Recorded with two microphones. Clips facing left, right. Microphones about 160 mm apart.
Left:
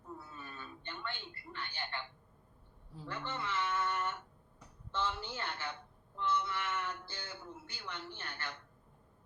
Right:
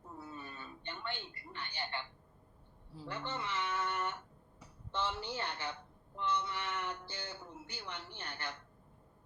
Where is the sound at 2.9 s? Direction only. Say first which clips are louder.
Even; 15° right (ahead or behind).